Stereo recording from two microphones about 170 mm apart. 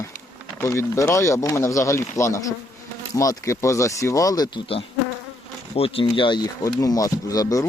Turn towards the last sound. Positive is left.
turn(degrees=20)  # may be behind; listen again after turning